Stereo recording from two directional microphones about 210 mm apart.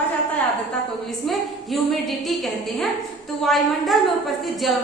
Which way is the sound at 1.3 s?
Centre (ahead or behind).